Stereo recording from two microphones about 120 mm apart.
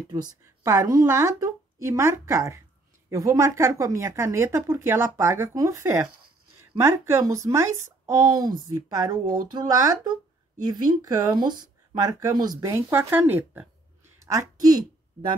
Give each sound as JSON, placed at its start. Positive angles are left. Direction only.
{"t": 0.1, "sound": "speech", "side_deg": -30}
{"t": 14.2, "sound": "a woman's voice", "side_deg": -30}